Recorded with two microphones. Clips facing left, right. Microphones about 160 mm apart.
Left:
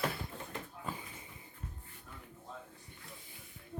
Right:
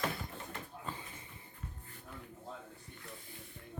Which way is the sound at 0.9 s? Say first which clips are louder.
Left 2 dB; 10° left (ahead or behind).